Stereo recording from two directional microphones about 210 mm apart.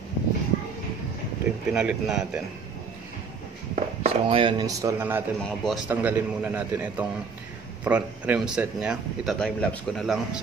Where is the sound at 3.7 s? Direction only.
30° right (ahead or behind); by 5.2 s 10° right (ahead or behind).